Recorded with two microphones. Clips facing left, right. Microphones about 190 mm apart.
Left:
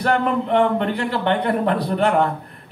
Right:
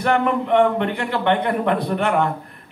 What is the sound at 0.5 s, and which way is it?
A man's voice, 35° left (ahead or behind).